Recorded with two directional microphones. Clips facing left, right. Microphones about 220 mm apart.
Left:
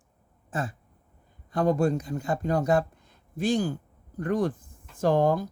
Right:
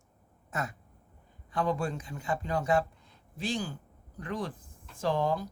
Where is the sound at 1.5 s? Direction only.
40° left (ahead or behind).